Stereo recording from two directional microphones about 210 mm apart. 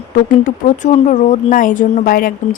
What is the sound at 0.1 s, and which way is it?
A woman's voice, 40° left (ahead or behind).